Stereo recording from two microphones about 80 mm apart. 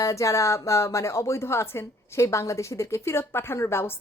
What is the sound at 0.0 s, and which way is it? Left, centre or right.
A woman's voice, left.